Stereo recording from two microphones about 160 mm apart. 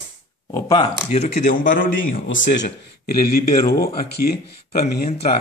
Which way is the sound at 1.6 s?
60° left (ahead or behind).